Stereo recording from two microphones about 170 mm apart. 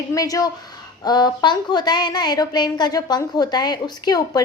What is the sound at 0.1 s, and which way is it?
A woman's voice, 20° left (ahead or behind).